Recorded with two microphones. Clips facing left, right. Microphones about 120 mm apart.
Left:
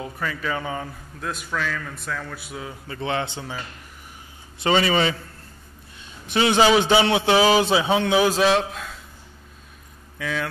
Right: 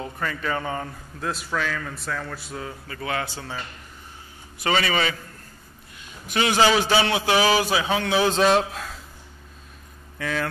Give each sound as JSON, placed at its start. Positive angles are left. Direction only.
{"t": 0.0, "sound": "a man's voice", "side_deg": 5}
{"t": 2.9, "sound": "a man's voice", "side_deg": 25}
{"t": 4.6, "sound": "a man's voice", "side_deg": 25}
{"t": 6.2, "sound": "a man's voice", "side_deg": 20}
{"t": 8.3, "sound": "a man's voice", "side_deg": 0}
{"t": 10.1, "sound": "speech", "side_deg": 0}